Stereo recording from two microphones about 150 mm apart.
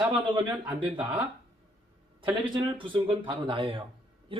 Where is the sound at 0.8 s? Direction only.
35° right (ahead or behind).